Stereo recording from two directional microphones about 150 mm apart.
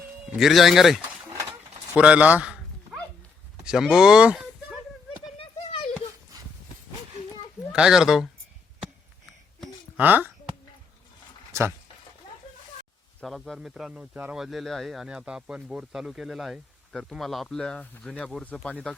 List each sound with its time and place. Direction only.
0.3 s a man's voice: centre (ahead or behind)
2.0 s a sound: 10° right (ahead or behind)
3.6 s speech: 5° right (ahead or behind)
5.4 s a sound: 35° left (ahead or behind)
7.7 s a man's voice: 5° right (ahead or behind)
10.0 s speech: 10° right (ahead or behind)
11.5 s speech: 20° right (ahead or behind)
13.1 s a man's voice: centre (ahead or behind)